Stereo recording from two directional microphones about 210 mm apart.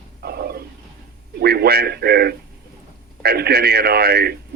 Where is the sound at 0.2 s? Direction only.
50° right (ahead or behind).